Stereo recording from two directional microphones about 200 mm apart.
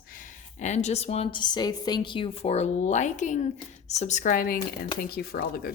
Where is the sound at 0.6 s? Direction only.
35° left (ahead or behind).